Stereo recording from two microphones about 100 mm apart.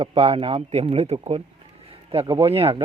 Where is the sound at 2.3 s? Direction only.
70° right (ahead or behind).